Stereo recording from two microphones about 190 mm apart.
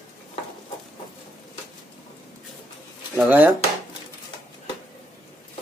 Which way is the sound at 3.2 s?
10° right (ahead or behind).